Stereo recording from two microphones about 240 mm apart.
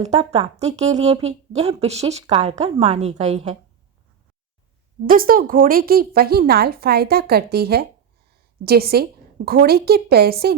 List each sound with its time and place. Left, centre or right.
0.0 s speech: right
5.0 s a woman's voice: right